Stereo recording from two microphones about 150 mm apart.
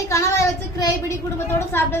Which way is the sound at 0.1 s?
20° left (ahead or behind).